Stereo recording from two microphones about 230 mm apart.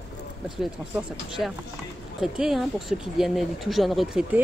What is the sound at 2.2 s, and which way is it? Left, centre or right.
Speech, centre.